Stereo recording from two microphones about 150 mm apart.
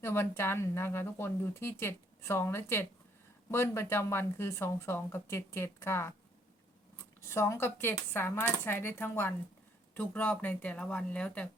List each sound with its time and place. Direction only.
0.0 s speech: 15° left (ahead or behind)
7.3 s speech: 20° left (ahead or behind)